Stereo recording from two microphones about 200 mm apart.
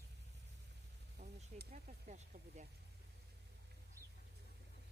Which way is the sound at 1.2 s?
50° right (ahead or behind).